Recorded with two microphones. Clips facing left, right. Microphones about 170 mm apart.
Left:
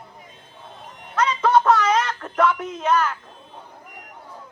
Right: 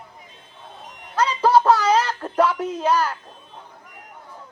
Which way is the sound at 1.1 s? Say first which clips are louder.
Right 1 dB; 30° right (ahead or behind).